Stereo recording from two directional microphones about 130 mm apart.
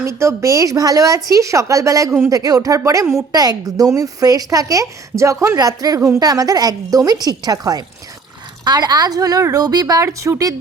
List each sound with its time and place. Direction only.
0.0 s a woman's voice: 20° right (ahead or behind)